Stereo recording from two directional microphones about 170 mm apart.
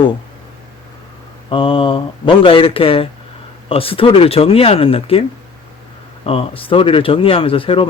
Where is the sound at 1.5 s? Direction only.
30° left (ahead or behind).